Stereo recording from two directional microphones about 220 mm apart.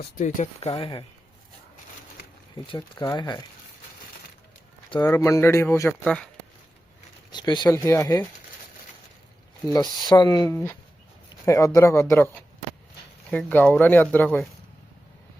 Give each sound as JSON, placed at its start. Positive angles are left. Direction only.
{"t": 0.2, "sound": "speech", "side_deg": 30}
{"t": 2.6, "sound": "speech", "side_deg": 20}
{"t": 4.9, "sound": "speech", "side_deg": 20}
{"t": 7.3, "sound": "speech", "side_deg": 20}
{"t": 10.1, "sound": "speech", "side_deg": 20}